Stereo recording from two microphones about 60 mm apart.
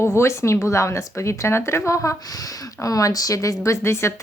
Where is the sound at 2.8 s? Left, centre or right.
Left.